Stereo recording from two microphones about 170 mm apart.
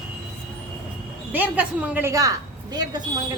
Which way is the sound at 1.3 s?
10° right (ahead or behind).